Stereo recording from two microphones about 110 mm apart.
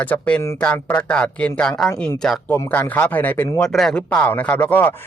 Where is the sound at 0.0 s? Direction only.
15° left (ahead or behind).